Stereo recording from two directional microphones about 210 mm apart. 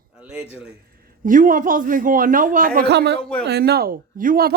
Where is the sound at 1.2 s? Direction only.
40° right (ahead or behind).